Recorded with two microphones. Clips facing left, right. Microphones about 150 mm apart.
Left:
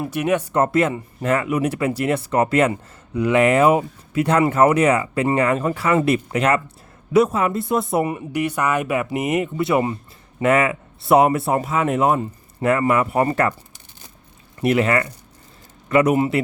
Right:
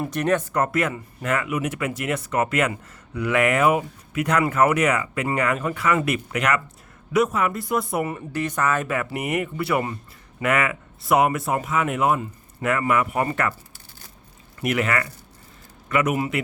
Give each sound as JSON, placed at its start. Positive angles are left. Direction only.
{"t": 0.0, "sound": "speech", "side_deg": 10}
{"t": 0.5, "sound": "speech", "side_deg": 25}
{"t": 14.6, "sound": "speech", "side_deg": 30}